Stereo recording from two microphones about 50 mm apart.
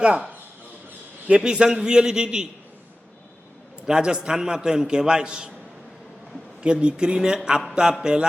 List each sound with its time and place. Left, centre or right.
0.0 s speech: right
1.5 s a man's voice: centre
3.8 s a man's voice: centre
6.6 s a man's voice: centre